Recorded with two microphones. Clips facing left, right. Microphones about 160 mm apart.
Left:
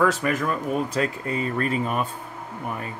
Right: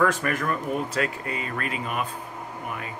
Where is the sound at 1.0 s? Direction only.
35° left (ahead or behind).